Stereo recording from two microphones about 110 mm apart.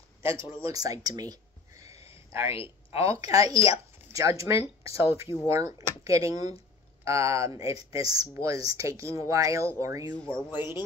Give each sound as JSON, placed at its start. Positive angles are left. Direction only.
{"t": 0.2, "sound": "speech", "side_deg": -25}
{"t": 2.1, "sound": "a sound", "side_deg": -25}
{"t": 3.0, "sound": "speech", "side_deg": -30}
{"t": 10.1, "sound": "speech", "side_deg": 10}